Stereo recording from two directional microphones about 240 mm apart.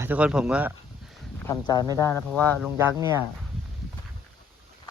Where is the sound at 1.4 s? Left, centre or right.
Centre.